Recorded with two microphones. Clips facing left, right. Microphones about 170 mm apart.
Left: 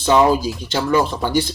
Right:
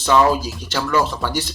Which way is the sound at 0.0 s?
20° left (ahead or behind).